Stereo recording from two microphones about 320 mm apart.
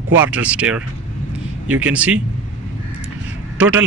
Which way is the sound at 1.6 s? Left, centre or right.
Centre.